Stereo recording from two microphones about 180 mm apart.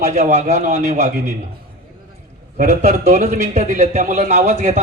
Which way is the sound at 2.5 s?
50° right (ahead or behind).